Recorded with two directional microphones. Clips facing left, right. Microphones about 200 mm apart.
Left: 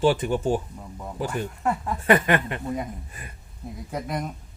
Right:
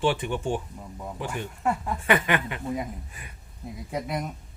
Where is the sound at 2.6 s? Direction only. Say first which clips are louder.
Left 1 dB; centre (ahead or behind).